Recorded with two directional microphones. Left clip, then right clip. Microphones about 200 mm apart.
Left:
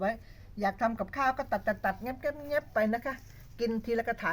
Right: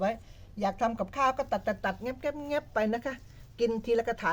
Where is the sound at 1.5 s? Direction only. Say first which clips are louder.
Even; 40° right (ahead or behind).